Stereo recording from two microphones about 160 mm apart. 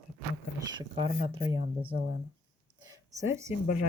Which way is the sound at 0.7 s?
30° right (ahead or behind).